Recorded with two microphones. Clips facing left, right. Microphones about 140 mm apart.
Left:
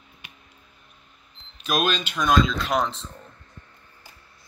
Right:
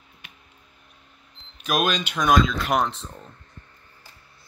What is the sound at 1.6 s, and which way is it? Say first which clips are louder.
Speech: right 1 dB; 10° right (ahead or behind).